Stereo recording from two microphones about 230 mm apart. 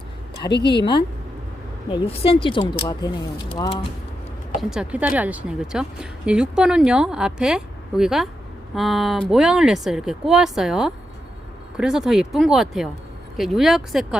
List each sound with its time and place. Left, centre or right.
0.6 s speech: centre
4.7 s speech: centre